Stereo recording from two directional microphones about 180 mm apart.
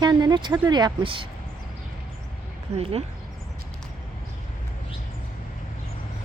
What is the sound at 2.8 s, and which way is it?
Speech, 35° right (ahead or behind).